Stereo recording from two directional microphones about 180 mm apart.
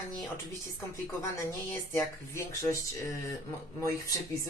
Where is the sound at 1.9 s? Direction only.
15° left (ahead or behind).